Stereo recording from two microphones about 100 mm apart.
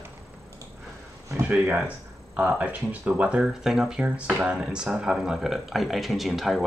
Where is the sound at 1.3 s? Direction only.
20° right (ahead or behind).